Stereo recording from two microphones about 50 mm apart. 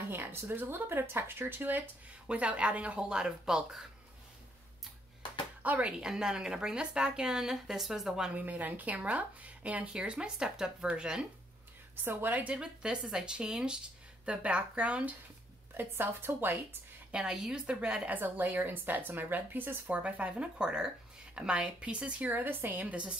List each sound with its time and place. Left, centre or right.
0.1 s speech: right
2.2 s speech: right
5.6 s speech: right
5.9 s a woman's voice: centre
8.4 s a woman's voice: right; by 11.2 s centre
11.9 s speech: right
12.4 s speech: right
13.0 s a woman's voice: centre
15.7 s speech: right
17.1 s a woman's voice: centre
18.1 s a woman's voice: right
19.9 s speech: right
22.3 s a woman's voice: right
22.8 s speech: right